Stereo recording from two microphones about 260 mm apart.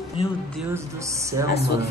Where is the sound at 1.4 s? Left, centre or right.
Left.